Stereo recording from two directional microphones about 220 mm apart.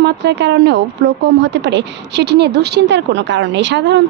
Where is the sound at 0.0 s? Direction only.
50° right (ahead or behind).